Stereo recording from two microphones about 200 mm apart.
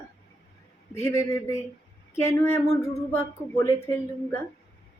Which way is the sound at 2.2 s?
15° left (ahead or behind).